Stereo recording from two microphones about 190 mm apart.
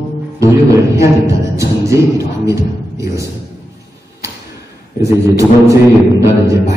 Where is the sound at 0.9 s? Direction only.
15° right (ahead or behind).